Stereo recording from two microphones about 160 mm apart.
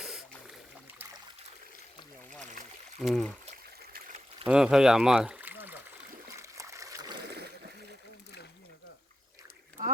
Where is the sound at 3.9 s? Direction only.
55° right (ahead or behind).